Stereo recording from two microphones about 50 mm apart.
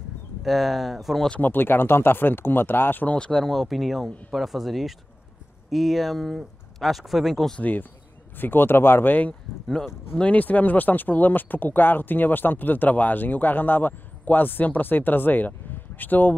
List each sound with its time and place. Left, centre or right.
0.4 s speech: centre
1.4 s speech: left
3.3 s speech: centre
8.4 s speech: left
10.3 s speech: left